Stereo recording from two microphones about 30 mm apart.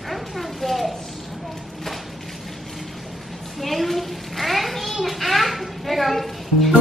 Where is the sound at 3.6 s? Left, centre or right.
Centre.